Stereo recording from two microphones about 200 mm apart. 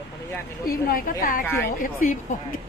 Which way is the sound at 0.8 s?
45° left (ahead or behind).